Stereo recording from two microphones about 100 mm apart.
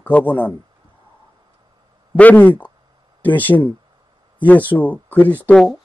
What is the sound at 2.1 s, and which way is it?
A man's voice, 15° left (ahead or behind).